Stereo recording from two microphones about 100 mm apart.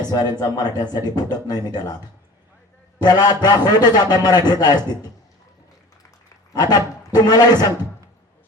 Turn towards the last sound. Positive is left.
turn(degrees=40)  # may be behind; listen again after turning